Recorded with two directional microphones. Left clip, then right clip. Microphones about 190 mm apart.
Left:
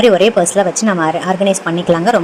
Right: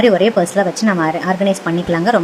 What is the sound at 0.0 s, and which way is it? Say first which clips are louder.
Speech: left 3 dB; 15° left (ahead or behind).